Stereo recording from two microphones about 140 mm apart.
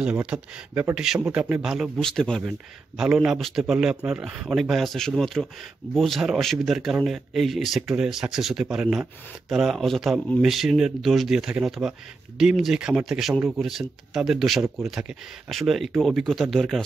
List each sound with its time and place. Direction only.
0.0 s speech: 10° right (ahead or behind)